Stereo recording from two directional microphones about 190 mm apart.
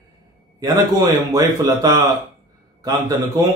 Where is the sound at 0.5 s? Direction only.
20° right (ahead or behind).